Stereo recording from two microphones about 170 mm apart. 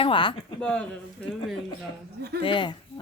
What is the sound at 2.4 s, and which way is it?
Speech, 30° left (ahead or behind).